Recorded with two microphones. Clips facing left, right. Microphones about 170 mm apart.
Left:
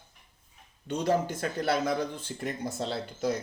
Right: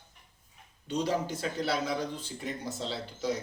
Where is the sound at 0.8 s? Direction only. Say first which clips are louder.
Left 3 dB; 55° left (ahead or behind).